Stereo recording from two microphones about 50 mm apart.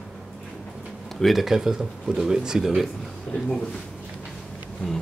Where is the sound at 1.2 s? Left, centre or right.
Centre.